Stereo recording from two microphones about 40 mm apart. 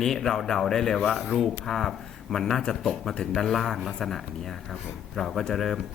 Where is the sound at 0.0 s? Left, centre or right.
Centre.